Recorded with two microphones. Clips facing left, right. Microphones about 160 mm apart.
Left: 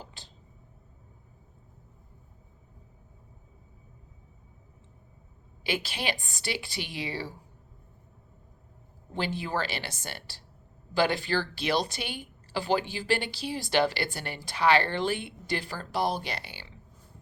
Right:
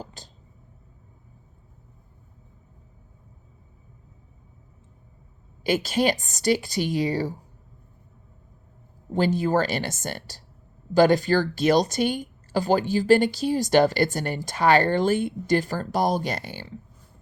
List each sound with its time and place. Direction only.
0.0 s a sound: 40° right (ahead or behind)
5.6 s speech: 45° right (ahead or behind)
9.1 s speech: 45° right (ahead or behind)